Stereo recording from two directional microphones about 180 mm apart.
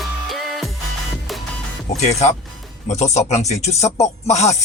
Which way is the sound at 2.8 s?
40° left (ahead or behind).